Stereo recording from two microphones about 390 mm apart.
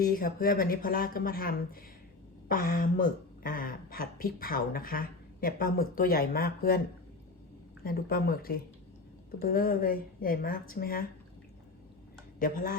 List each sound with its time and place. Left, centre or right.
0.0 s speech: left
7.9 s speech: left
12.4 s speech: left